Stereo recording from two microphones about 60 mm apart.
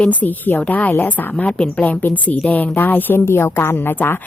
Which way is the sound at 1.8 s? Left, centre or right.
Left.